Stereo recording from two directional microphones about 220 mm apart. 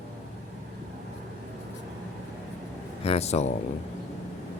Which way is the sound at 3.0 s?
30° left (ahead or behind).